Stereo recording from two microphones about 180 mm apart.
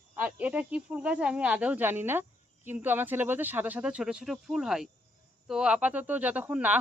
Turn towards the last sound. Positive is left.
turn(degrees=-10)  # may be behind; listen again after turning